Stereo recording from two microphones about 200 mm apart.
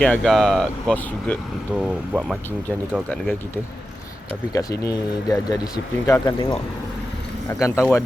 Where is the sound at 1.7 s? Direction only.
5° right (ahead or behind).